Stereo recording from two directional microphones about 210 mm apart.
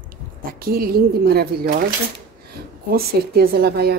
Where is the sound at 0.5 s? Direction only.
45° right (ahead or behind).